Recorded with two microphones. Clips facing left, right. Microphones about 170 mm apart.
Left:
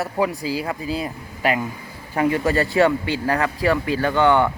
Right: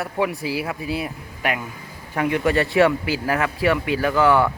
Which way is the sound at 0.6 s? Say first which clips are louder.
Left 1 dB; 10° right (ahead or behind).